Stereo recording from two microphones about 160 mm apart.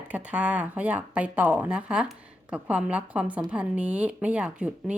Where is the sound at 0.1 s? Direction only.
10° right (ahead or behind).